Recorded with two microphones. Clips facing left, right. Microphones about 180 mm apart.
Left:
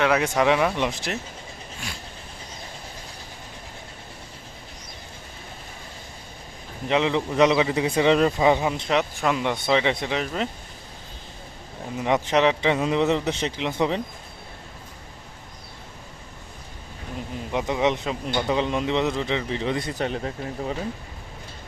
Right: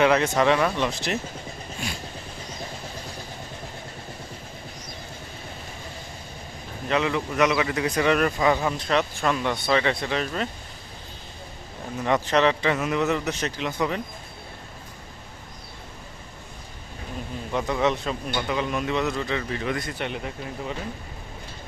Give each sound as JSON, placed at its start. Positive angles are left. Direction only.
{"t": 0.0, "sound": "speech", "side_deg": 5}
{"t": 6.8, "sound": "a man's voice", "side_deg": 20}
{"t": 11.9, "sound": "a man's voice", "side_deg": 15}
{"t": 17.5, "sound": "speech", "side_deg": 15}
{"t": 18.3, "sound": "a man's voice", "side_deg": 30}
{"t": 20.0, "sound": "speech", "side_deg": 35}